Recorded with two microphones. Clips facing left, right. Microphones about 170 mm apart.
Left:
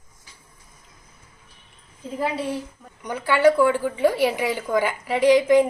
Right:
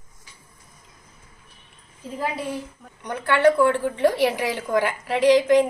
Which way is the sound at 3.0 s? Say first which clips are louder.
Left 1 dB; 5° left (ahead or behind).